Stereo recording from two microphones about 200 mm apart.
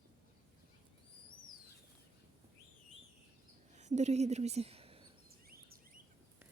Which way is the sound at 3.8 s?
35° right (ahead or behind).